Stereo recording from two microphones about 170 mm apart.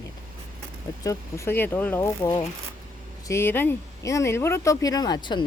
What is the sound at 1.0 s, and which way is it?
Speech, 20° left (ahead or behind).